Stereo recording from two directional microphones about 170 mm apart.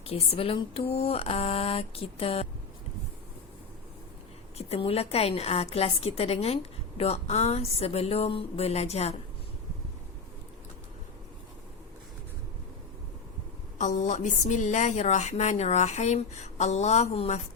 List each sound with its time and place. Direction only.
0.0 s a woman's voice: 35° left (ahead or behind)
4.5 s a woman's voice: 35° left (ahead or behind)
13.7 s a woman's voice: 45° left (ahead or behind)